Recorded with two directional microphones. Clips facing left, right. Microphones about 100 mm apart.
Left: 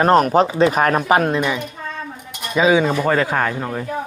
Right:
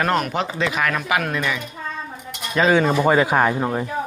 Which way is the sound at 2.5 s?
5° left (ahead or behind).